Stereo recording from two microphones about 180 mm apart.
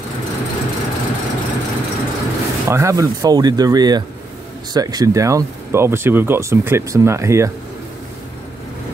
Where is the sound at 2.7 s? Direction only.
15° right (ahead or behind).